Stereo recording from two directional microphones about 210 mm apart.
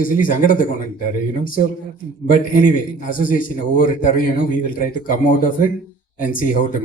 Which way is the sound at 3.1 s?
40° left (ahead or behind).